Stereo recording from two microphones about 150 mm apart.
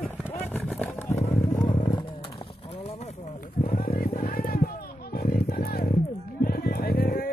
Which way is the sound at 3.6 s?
80° left.